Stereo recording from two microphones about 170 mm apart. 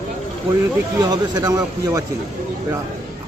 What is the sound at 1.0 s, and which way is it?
Speech, 25° right (ahead or behind).